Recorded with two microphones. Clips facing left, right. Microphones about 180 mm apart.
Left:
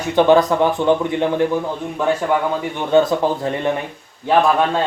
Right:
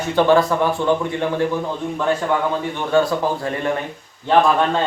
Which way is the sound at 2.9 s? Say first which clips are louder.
Left 3 dB; 20° left (ahead or behind).